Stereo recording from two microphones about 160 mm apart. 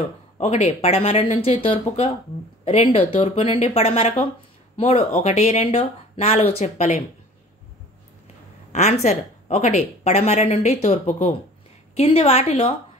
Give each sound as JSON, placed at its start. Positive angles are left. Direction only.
{"t": 0.4, "sound": "speech", "side_deg": 45}
{"t": 8.7, "sound": "speech", "side_deg": 45}